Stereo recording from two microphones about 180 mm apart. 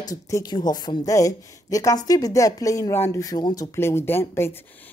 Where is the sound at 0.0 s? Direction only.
20° left (ahead or behind).